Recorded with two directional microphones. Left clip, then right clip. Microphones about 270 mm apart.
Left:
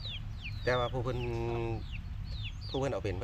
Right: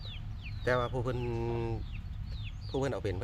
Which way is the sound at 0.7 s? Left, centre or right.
Right.